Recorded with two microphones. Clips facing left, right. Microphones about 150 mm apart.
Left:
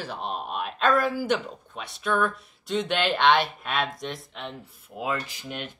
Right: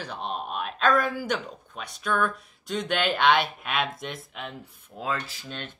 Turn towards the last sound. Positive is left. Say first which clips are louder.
# left 3 dB
turn(degrees=10)  # may be behind; listen again after turning